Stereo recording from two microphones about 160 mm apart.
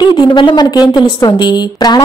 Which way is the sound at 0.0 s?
30° left (ahead or behind).